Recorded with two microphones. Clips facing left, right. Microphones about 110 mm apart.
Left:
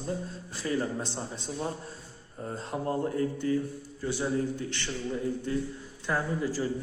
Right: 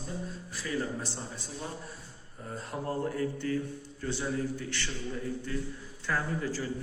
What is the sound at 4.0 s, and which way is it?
Speech, 10° left (ahead or behind).